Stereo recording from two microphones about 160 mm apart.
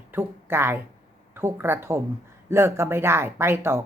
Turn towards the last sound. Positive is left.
turn(degrees=-15)  # may be behind; listen again after turning